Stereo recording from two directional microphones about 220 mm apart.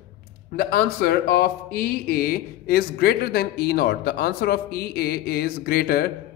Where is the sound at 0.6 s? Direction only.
45° left (ahead or behind).